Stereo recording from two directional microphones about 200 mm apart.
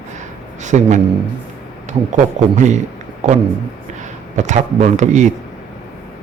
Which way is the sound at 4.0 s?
35° right (ahead or behind).